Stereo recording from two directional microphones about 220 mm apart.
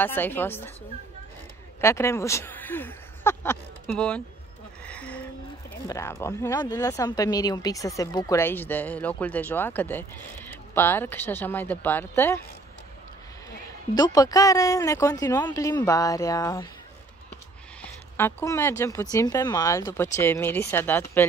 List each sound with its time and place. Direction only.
0.0 s speech: 10° left (ahead or behind)
1.8 s speech: 10° left (ahead or behind)
4.8 s music: 5° left (ahead or behind)
5.9 s speech: 10° left (ahead or behind)
13.9 s speech: 15° left (ahead or behind)
17.8 s speech: 10° left (ahead or behind)